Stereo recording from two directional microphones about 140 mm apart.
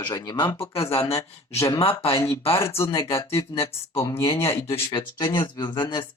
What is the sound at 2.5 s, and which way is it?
Speech, 20° left (ahead or behind).